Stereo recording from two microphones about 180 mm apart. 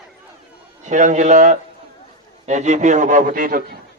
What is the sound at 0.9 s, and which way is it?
A man's voice, 40° right (ahead or behind).